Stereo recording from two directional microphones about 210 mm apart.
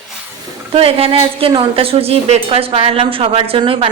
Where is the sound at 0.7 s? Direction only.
25° right (ahead or behind).